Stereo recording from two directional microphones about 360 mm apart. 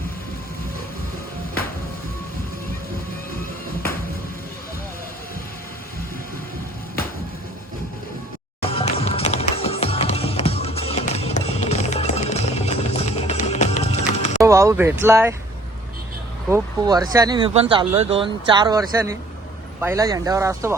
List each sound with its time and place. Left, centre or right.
8.6 s music: centre
14.4 s speech: centre
16.5 s speech: centre